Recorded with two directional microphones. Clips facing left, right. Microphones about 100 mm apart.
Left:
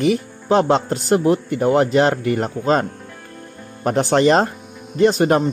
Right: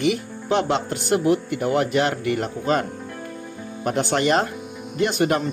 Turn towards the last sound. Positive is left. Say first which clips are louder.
# left 6 dB
turn(degrees=35)  # may be behind; listen again after turning